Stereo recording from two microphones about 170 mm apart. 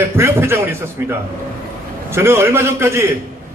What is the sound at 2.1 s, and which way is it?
A man's voice, 15° right (ahead or behind).